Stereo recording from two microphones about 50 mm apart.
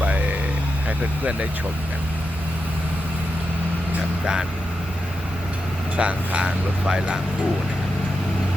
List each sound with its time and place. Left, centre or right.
0.0 s a sound: right
0.9 s speech: right
6.0 s speech: right